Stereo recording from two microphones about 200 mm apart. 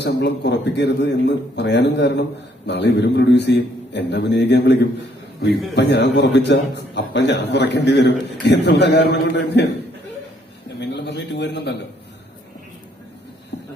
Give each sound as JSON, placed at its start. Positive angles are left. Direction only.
{"t": 0.0, "sound": "a man's voice", "side_deg": 60}
{"t": 10.8, "sound": "a man's voice", "side_deg": 60}